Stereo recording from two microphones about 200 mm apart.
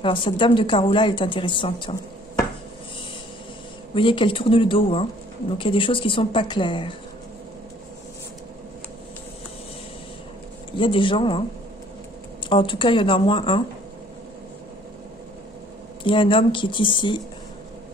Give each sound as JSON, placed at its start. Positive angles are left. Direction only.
{"t": 0.0, "sound": "a woman's voice", "side_deg": 25}
{"t": 3.9, "sound": "a woman's voice", "side_deg": 25}
{"t": 10.8, "sound": "a woman's voice", "side_deg": 25}
{"t": 12.4, "sound": "a woman's voice", "side_deg": 25}
{"t": 16.0, "sound": "a woman's voice", "side_deg": 25}